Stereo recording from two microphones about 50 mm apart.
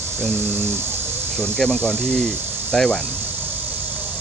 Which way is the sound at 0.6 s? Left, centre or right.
Right.